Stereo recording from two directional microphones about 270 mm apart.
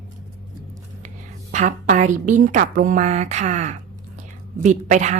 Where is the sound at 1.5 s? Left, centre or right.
Right.